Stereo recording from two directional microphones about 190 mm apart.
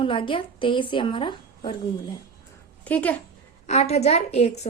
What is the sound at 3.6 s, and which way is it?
Speech, 35° left (ahead or behind).